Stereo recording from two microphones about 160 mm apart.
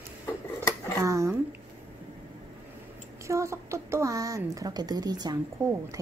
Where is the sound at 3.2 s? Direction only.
20° right (ahead or behind).